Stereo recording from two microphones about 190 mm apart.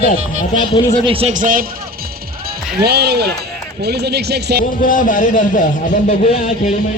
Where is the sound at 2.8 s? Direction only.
55° right (ahead or behind).